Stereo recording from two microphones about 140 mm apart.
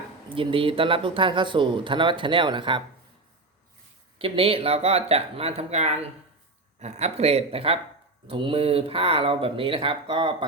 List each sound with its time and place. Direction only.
0.3 s speech: 40° right (ahead or behind)
4.2 s speech: 40° right (ahead or behind)